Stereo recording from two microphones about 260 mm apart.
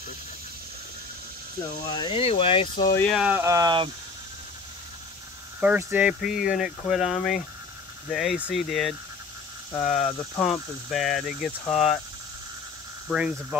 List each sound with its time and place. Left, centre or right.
1.9 s speech: centre
3.1 s speech: centre
5.6 s speech: centre
13.1 s speech: centre